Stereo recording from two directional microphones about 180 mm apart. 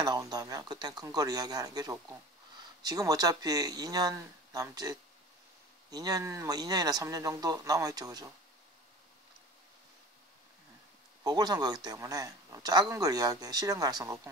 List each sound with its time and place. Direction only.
0.0 s speech: 20° right (ahead or behind)
11.2 s speech: 20° right (ahead or behind)